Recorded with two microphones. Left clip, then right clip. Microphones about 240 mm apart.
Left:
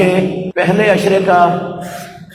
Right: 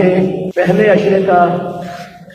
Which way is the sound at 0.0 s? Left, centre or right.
Left.